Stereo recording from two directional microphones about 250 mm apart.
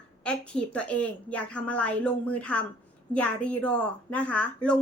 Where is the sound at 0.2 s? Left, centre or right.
Centre.